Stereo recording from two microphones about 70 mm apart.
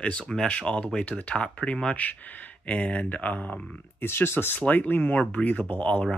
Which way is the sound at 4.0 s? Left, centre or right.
Left.